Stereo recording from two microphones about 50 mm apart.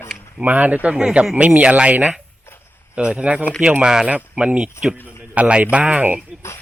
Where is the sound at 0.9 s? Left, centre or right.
Centre.